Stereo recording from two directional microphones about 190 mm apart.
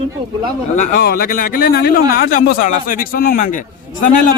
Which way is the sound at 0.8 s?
50° left (ahead or behind).